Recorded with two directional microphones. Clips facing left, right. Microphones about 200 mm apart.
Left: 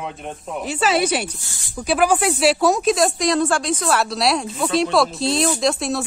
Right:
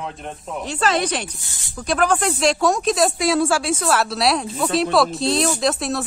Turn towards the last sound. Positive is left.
turn(degrees=0)  # may be behind; listen again after turning